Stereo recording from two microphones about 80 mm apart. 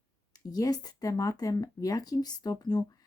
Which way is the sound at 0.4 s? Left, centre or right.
Left.